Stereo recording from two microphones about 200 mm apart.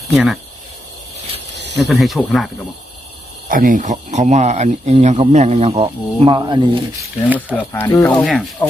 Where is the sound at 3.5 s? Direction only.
40° right (ahead or behind); by 7.1 s 20° right (ahead or behind).